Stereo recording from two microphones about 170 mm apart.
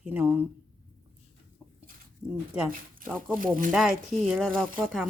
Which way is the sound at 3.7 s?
Centre (ahead or behind).